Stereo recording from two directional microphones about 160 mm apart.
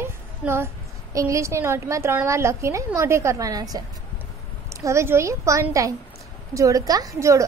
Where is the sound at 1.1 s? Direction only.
20° right (ahead or behind).